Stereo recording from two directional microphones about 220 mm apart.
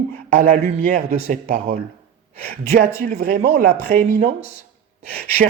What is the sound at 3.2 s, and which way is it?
Speech, 40° right (ahead or behind).